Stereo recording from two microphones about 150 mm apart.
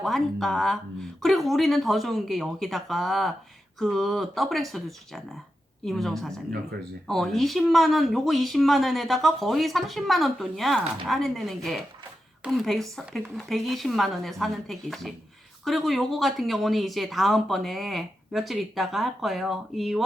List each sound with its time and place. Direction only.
0.0 s speech: centre (ahead or behind)